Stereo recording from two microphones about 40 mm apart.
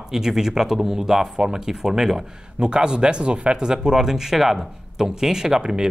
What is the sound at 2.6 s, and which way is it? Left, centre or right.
Speech, right.